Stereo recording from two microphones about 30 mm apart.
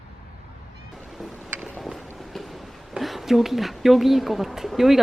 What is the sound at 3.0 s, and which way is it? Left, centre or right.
Speech, centre.